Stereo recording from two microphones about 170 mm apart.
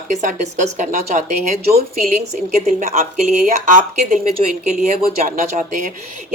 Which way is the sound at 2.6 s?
45° right (ahead or behind).